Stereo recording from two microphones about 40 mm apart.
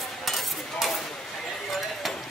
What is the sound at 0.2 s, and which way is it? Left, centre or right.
Cutlery, centre.